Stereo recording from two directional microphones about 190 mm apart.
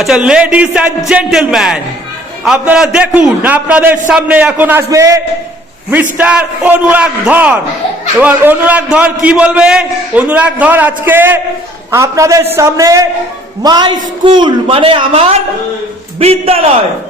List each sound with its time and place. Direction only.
0.0 s a man's voice: 5° right (ahead or behind); by 16.6 s 30° right (ahead or behind)